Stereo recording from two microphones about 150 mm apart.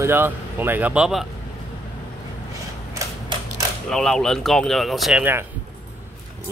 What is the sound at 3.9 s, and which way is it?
Speech, centre (ahead or behind).